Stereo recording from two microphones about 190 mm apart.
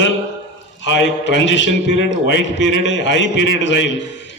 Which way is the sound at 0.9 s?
70° left (ahead or behind).